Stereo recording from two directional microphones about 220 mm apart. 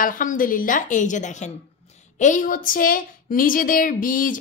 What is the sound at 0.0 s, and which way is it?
A woman's voice, 35° left (ahead or behind).